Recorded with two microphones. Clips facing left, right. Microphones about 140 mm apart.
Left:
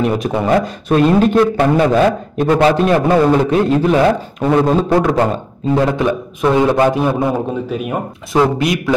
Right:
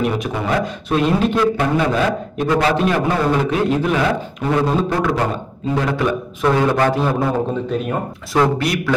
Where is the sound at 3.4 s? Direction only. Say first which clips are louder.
Left 4 dB; 35° left (ahead or behind).